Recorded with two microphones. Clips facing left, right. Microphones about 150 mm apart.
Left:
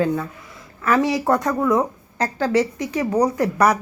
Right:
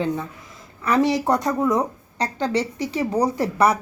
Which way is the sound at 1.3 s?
20° right (ahead or behind).